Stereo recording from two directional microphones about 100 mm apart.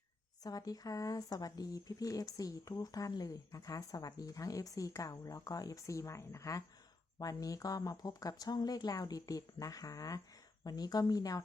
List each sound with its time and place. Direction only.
0.4 s speech: 40° left (ahead or behind)